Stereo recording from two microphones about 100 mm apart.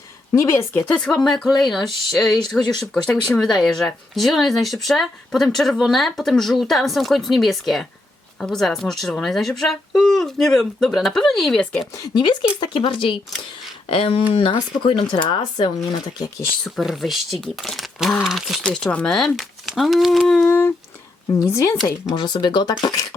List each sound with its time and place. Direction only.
0.3 s a woman's voice: 25° left (ahead or behind)
0.9 s speech: 5° left (ahead or behind)
12.1 s speech: 50° left (ahead or behind)
15.1 s speech: 45° left (ahead or behind)
16.6 s speech: centre (ahead or behind)
18.6 s speech: 5° left (ahead or behind)
20.5 s a woman's voice: 25° left (ahead or behind)
22.1 s speech: 45° left (ahead or behind)